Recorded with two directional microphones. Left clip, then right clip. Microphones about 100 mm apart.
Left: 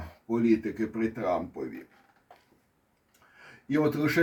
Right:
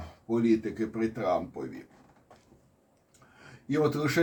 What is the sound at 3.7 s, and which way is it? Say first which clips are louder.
Speech: left 1 dB; 15° right (ahead or behind).